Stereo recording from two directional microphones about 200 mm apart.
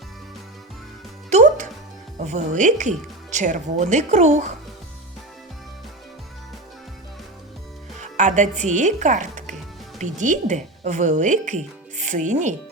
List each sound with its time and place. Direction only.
1.3 s music: 35° right (ahead or behind)
2.1 s speech: 35° right (ahead or behind)
7.9 s speech: 35° right (ahead or behind)